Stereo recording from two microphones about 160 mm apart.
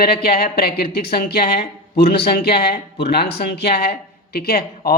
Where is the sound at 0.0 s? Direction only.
75° left (ahead or behind).